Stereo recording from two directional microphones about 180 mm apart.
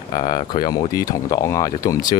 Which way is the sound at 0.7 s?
20° left (ahead or behind).